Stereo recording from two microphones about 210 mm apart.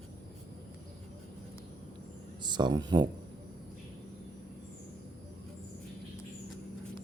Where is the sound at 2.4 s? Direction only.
20° right (ahead or behind).